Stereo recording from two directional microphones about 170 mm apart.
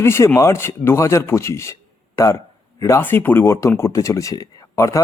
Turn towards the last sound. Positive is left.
turn(degrees=20)  # may be behind; listen again after turning